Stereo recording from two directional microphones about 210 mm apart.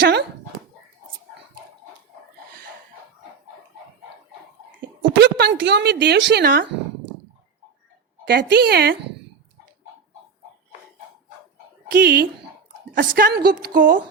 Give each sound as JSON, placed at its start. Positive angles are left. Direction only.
{"t": 0.0, "sound": "speech", "side_deg": -50}
{"t": 5.2, "sound": "speech", "side_deg": -55}
{"t": 8.2, "sound": "speech", "side_deg": -55}
{"t": 11.9, "sound": "speech", "side_deg": -45}